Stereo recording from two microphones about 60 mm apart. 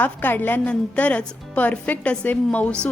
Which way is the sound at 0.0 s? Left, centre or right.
Left.